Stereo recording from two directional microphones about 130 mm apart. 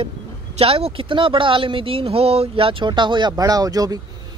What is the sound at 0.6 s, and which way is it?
Speech, 50° right (ahead or behind).